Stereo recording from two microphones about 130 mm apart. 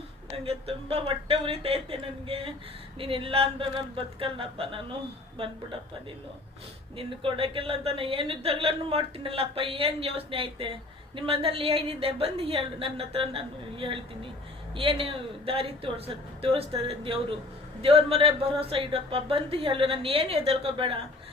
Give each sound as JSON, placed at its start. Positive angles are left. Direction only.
{"t": 0.4, "sound": "a woman's voice", "side_deg": -50}
{"t": 6.9, "sound": "a woman's voice", "side_deg": -45}